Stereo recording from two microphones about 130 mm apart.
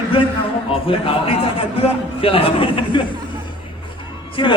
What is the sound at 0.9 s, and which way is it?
A man's voice, 45° left (ahead or behind).